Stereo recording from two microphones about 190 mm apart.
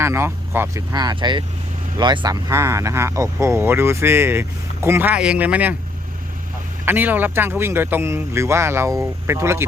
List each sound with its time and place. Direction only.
0.0 s speech: 15° right (ahead or behind)
6.8 s speech: 10° right (ahead or behind)